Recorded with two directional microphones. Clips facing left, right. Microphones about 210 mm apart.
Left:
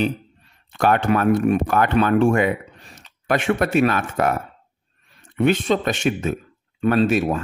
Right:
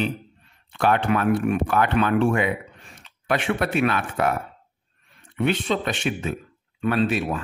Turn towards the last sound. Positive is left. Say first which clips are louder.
# left 4 dB
turn(degrees=45)  # may be behind; listen again after turning